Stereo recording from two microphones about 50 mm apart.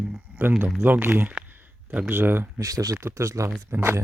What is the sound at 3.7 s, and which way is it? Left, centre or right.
Speech, right.